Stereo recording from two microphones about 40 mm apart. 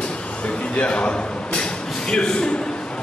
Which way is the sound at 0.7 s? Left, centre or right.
Left.